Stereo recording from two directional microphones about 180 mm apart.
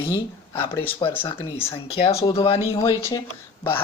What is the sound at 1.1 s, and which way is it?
Speech, 10° left (ahead or behind).